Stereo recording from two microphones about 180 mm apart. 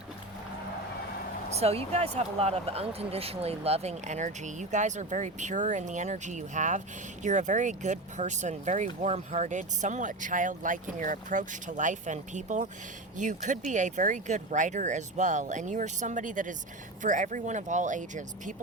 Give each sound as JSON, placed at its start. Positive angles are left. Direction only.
{"t": 1.5, "sound": "speech", "side_deg": -35}